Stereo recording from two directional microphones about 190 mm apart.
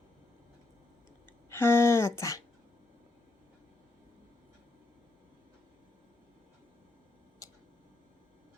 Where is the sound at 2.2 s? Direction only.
15° left (ahead or behind).